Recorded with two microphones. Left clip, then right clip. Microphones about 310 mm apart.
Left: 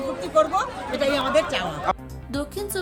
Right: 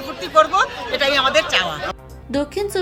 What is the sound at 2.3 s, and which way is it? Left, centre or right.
Speech, left.